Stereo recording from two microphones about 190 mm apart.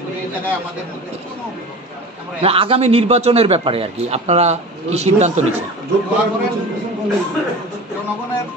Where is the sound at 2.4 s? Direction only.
30° right (ahead or behind).